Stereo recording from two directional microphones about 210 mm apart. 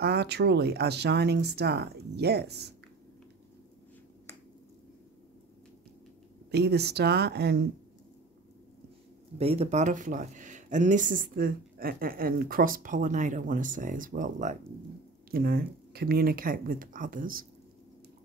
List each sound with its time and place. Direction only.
0.0 s speech: 50° right (ahead or behind)
6.5 s speech: 50° right (ahead or behind)
9.4 s speech: 30° right (ahead or behind)